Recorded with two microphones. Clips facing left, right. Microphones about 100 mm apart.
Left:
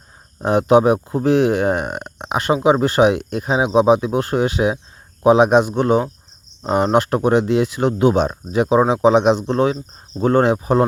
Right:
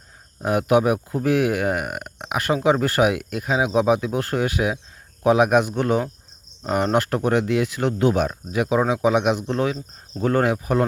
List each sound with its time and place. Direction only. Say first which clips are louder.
0.4 s speech: left 5 dB; 30° left (ahead or behind)